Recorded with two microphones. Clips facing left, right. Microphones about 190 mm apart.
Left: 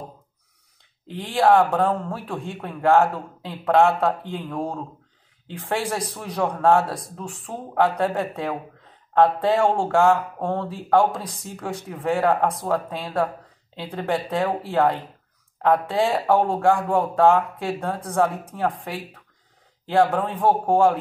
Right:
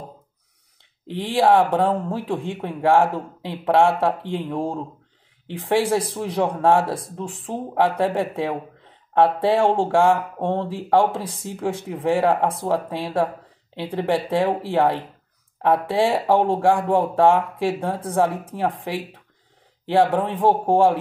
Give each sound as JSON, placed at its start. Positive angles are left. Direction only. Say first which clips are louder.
{"t": 1.2, "sound": "speech", "louder": "right 1 dB", "side_deg": -15}